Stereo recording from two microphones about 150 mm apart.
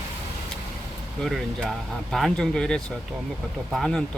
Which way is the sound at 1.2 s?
5° left (ahead or behind).